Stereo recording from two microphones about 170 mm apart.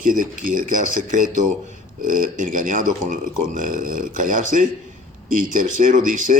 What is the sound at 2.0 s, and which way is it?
Speech, 50° right (ahead or behind).